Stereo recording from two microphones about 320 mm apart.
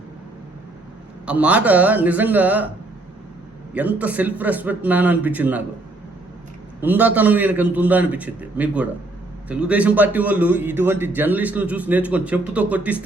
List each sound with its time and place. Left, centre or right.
1.2 s a man's voice: centre
3.8 s a man's voice: centre
6.8 s a man's voice: centre